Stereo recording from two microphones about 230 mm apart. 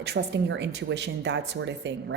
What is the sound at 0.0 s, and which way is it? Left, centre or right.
Speech, right.